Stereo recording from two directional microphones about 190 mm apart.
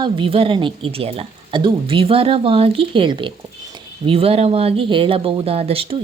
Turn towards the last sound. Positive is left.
turn(degrees=-30)  # may be behind; listen again after turning